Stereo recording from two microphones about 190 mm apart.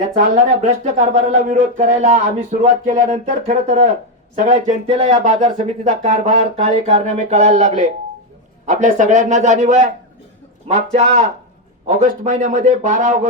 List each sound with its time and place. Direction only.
0.9 s speech: 40° right (ahead or behind)